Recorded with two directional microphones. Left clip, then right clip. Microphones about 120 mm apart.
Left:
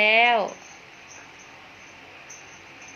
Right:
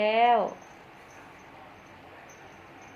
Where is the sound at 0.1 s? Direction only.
30° left (ahead or behind).